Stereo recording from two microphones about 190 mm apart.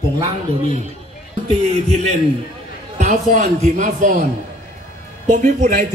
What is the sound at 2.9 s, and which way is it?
A man's voice, 40° right (ahead or behind).